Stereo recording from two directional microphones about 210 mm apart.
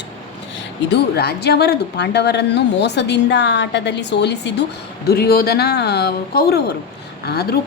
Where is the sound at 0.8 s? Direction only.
50° left (ahead or behind).